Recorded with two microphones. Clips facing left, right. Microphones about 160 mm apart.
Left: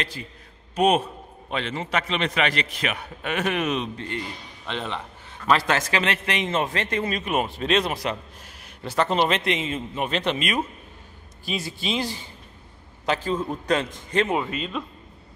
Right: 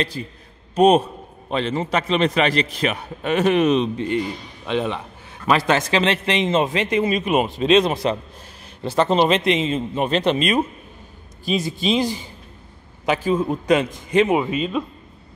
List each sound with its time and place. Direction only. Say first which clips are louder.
0.0 s a man's voice: right 7 dB; 35° right (ahead or behind)
11.4 s a man's voice: right 8 dB; 20° right (ahead or behind)